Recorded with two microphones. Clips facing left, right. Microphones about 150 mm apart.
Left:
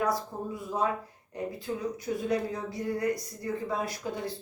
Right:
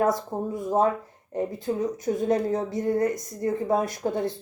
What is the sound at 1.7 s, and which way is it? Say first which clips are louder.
Speech: right 6 dB; 40° right (ahead or behind).